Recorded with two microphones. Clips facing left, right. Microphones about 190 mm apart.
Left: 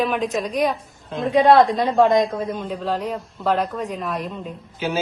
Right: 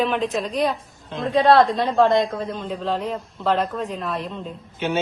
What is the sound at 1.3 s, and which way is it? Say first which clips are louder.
A man's voice: left 1 dB; 15° left (ahead or behind).